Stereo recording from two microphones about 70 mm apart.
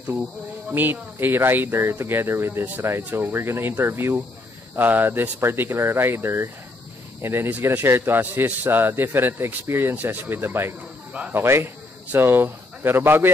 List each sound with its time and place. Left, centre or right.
0.7 s a man's voice: right